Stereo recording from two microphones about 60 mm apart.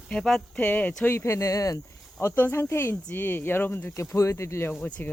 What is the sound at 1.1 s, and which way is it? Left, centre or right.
Speech, left.